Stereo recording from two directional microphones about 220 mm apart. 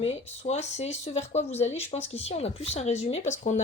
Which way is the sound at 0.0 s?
30° left (ahead or behind).